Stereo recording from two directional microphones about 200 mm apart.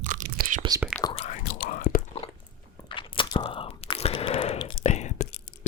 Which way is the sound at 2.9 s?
25° left (ahead or behind).